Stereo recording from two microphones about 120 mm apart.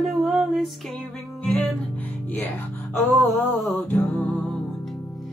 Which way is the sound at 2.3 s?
15° left (ahead or behind).